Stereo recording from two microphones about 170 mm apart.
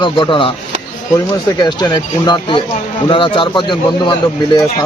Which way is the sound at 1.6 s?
25° left (ahead or behind).